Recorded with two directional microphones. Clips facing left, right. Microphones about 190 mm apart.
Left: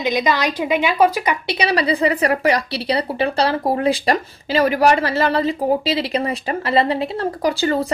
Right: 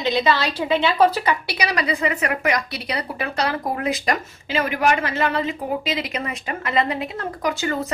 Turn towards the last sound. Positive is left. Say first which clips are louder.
# left 5 dB
turn(degrees=35)  # may be behind; listen again after turning